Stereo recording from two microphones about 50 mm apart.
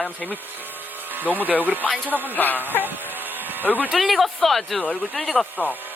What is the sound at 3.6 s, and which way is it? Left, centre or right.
Speech, left.